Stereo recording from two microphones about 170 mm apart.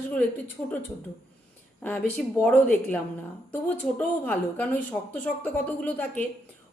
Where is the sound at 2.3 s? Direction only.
10° left (ahead or behind).